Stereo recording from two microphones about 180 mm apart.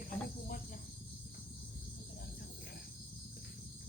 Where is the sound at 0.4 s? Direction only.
50° left (ahead or behind).